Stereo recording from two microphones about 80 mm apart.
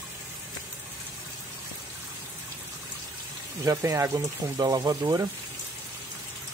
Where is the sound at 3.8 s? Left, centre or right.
Right.